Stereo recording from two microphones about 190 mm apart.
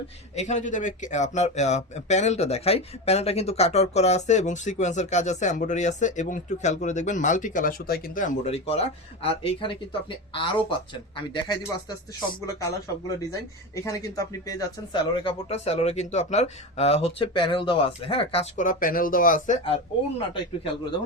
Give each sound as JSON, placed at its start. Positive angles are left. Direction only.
{"t": 0.3, "sound": "speech", "side_deg": 40}
{"t": 13.1, "sound": "speech", "side_deg": 15}
{"t": 18.6, "sound": "speech", "side_deg": 45}